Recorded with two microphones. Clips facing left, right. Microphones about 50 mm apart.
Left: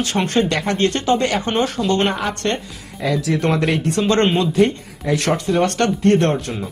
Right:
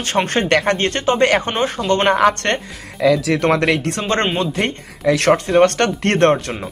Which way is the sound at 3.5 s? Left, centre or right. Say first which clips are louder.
Right 3 dB; right.